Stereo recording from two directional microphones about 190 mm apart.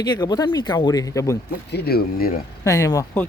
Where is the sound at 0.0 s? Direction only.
20° left (ahead or behind).